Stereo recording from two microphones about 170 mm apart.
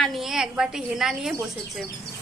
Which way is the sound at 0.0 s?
Centre (ahead or behind).